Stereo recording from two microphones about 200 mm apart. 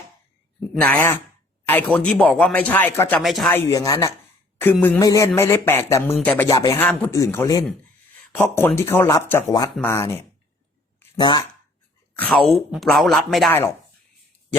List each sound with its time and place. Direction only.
0.7 s speech: 5° left (ahead or behind)
3.2 s speech: centre (ahead or behind)
3.5 s speech: 15° left (ahead or behind)
12.1 s speech: 5° left (ahead or behind)